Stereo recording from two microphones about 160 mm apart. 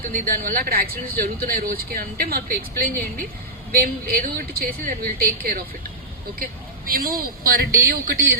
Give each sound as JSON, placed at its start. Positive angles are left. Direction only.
{"t": 0.0, "sound": "speech", "side_deg": -65}
{"t": 6.4, "sound": "vehicle", "side_deg": -65}
{"t": 7.4, "sound": "speech", "side_deg": -70}